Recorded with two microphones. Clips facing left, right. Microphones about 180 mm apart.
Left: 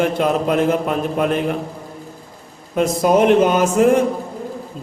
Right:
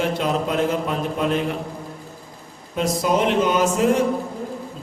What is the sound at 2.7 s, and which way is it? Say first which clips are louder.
Speech: left 5 dB; 50° left (ahead or behind).